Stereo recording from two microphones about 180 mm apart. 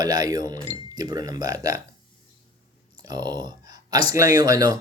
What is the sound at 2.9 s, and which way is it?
Speech, 20° right (ahead or behind).